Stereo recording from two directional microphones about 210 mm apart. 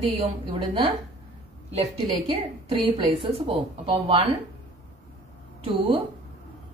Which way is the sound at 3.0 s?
25° right (ahead or behind).